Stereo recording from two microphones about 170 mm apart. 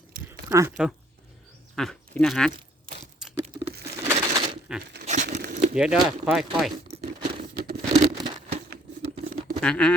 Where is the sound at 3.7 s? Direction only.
70° right (ahead or behind).